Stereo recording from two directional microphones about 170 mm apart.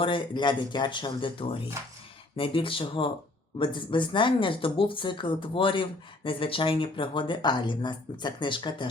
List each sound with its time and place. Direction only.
0.0 s speech: 30° left (ahead or behind)